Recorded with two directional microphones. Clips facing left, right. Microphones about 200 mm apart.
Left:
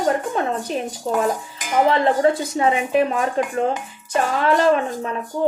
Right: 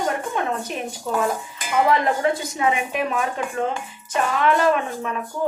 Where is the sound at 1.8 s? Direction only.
30° left (ahead or behind).